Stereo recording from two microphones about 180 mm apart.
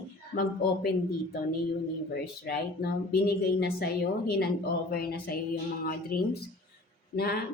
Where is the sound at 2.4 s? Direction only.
60° left (ahead or behind).